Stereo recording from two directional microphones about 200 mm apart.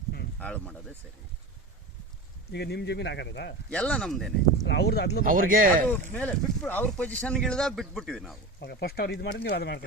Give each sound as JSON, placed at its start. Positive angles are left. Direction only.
{"t": 0.3, "sound": "speech", "side_deg": 5}
{"t": 2.5, "sound": "speech", "side_deg": 55}
{"t": 3.7, "sound": "speech", "side_deg": 5}
{"t": 4.6, "sound": "speech", "side_deg": 60}
{"t": 5.2, "sound": "speech", "side_deg": -45}
{"t": 5.9, "sound": "speech", "side_deg": 5}
{"t": 8.6, "sound": "speech", "side_deg": 50}